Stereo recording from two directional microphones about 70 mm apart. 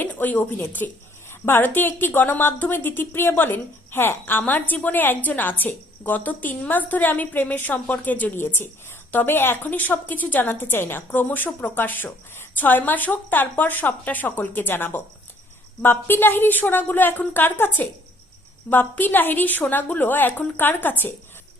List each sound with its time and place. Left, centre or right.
0.0 s speech: left